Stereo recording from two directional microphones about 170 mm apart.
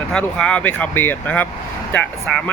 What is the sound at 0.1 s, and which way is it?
Speech, 5° left (ahead or behind).